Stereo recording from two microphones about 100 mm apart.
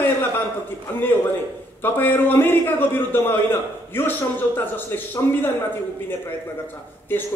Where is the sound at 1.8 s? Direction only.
20° left (ahead or behind).